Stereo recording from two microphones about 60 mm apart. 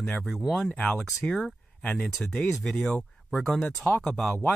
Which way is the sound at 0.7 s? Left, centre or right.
Centre.